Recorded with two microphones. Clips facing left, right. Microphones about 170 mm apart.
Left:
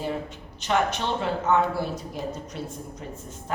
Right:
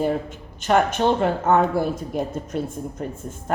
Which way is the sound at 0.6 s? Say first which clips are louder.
Right 6 dB; 50° right (ahead or behind).